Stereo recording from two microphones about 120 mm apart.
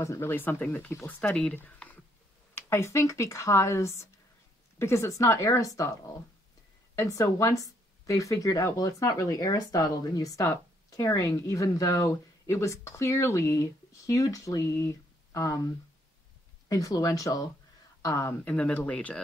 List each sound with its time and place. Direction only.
0.0 s speech: 20° left (ahead or behind)
7.0 s speech: 25° left (ahead or behind)
16.6 s speech: 30° left (ahead or behind)
18.4 s speech: 15° left (ahead or behind)